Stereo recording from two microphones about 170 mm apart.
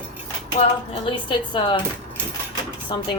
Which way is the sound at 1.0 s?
30° left (ahead or behind).